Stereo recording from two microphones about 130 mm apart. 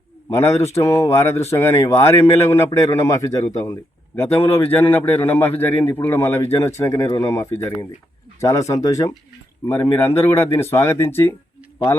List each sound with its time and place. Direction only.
0.3 s a man's voice: 20° left (ahead or behind)